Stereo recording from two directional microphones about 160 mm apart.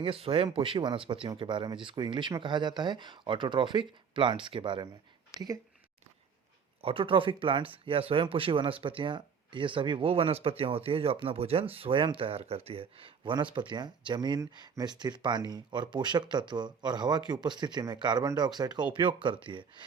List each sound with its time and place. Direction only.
0.0 s speech: 35° right (ahead or behind)
6.8 s speech: 35° right (ahead or behind)